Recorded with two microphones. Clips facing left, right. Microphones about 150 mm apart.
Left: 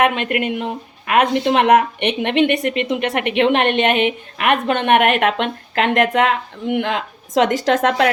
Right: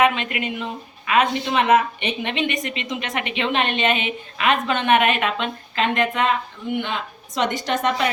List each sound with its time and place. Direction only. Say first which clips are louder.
0.0 s speech: left 3 dB; 60° left (ahead or behind); by 8.1 s 90° left